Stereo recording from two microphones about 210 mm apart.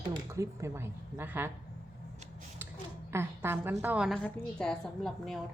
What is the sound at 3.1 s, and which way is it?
A woman's voice, 10° right (ahead or behind).